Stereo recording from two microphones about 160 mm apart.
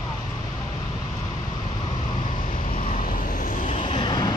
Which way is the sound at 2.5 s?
35° left (ahead or behind).